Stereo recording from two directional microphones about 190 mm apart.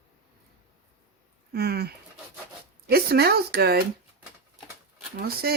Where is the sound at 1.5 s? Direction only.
55° right (ahead or behind).